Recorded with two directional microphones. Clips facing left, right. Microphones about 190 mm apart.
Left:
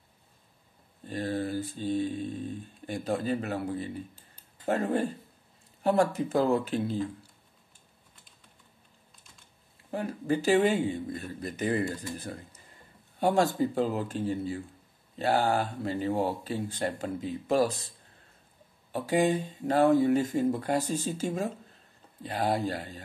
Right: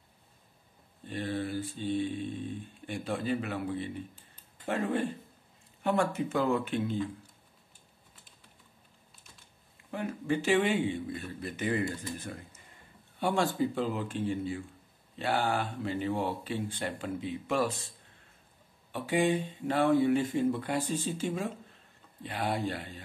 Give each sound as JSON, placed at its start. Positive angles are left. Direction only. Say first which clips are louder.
{"t": 1.0, "sound": "mantra", "louder": "left 3 dB", "side_deg": 40}
{"t": 9.8, "sound": "mantra", "louder": "left 2 dB", "side_deg": 35}